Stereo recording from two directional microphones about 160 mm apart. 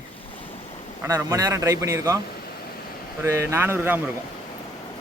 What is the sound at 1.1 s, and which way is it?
A man's voice, 20° right (ahead or behind).